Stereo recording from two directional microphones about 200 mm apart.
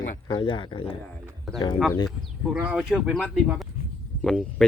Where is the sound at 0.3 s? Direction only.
25° left (ahead or behind).